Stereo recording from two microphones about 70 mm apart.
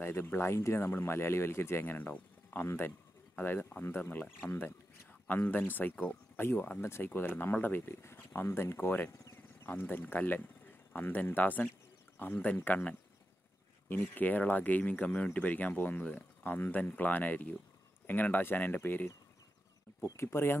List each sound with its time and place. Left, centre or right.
0.0 s speech: left
6.8 s speech: left
20.2 s speech: left